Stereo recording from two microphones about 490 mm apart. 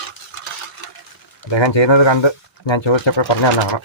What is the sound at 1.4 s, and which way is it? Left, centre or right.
Speech, left.